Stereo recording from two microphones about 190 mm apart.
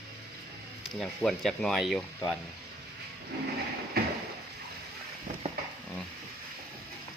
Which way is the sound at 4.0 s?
55° right (ahead or behind).